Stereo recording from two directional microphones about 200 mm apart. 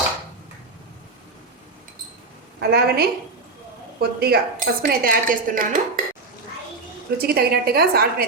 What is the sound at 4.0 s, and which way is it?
A woman's voice, 50° right (ahead or behind).